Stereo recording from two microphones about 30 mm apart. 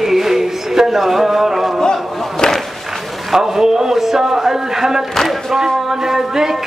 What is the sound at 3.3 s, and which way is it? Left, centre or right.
A man's voice, centre.